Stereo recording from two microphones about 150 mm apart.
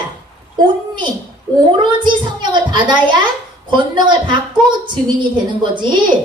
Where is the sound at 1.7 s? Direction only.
30° right (ahead or behind).